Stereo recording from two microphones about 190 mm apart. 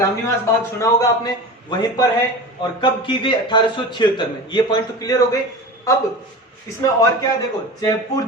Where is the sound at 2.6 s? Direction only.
25° left (ahead or behind).